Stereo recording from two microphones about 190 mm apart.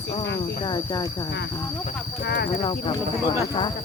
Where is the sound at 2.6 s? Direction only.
25° left (ahead or behind).